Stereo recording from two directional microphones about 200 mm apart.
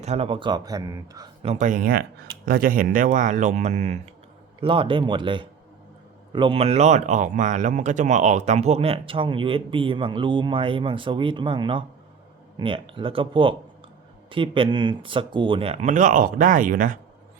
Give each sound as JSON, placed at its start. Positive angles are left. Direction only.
{"t": 0.0, "sound": "speech", "side_deg": -30}